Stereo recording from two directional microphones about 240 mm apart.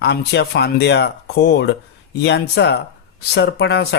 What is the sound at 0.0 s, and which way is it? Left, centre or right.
Speech, left.